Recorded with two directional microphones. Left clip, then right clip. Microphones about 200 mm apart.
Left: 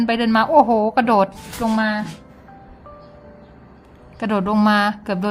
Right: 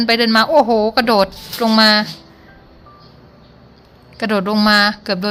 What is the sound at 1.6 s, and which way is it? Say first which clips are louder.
Speech: right 9 dB; 25° right (ahead or behind).